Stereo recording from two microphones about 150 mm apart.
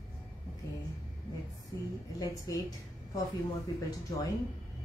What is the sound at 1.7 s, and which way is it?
A woman's voice, 20° left (ahead or behind).